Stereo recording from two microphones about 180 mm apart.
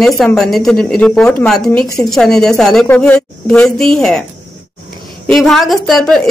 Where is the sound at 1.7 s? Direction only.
15° left (ahead or behind).